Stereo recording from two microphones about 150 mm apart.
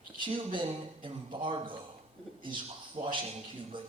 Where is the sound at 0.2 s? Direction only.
35° right (ahead or behind).